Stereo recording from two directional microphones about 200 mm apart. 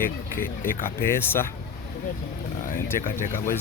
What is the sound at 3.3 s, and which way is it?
Speech, 45° left (ahead or behind).